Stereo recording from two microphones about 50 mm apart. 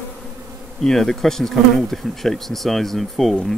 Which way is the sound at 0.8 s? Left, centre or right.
Centre.